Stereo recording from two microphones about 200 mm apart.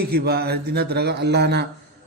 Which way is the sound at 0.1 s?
50° right (ahead or behind).